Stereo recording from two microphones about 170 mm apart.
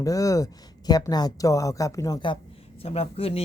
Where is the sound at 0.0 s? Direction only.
20° left (ahead or behind).